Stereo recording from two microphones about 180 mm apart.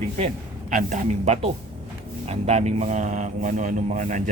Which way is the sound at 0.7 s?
45° right (ahead or behind).